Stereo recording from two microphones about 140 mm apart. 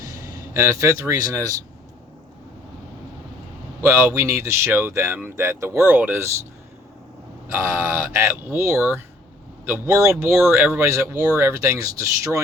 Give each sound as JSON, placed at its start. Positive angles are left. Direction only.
{"t": 0.0, "sound": "speech", "side_deg": -20}
{"t": 3.8, "sound": "speech", "side_deg": -20}
{"t": 7.4, "sound": "speech", "side_deg": -20}